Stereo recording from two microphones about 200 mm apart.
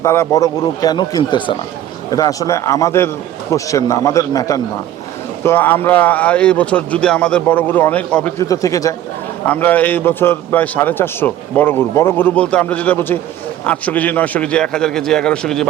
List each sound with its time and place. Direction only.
0.0 s a man's voice: 15° left (ahead or behind)